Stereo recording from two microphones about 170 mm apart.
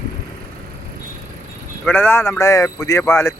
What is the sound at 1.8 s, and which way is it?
Speech, 10° left (ahead or behind).